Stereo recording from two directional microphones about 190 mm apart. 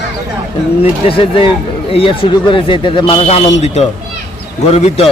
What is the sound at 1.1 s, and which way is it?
Speech, 30° left (ahead or behind).